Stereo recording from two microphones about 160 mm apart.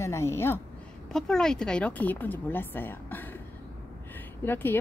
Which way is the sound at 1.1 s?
5° left (ahead or behind).